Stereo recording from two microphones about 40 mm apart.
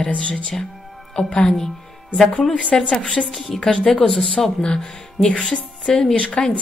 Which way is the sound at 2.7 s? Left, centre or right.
Centre.